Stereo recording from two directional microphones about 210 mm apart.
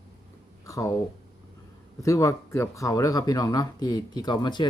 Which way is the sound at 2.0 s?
15° left (ahead or behind).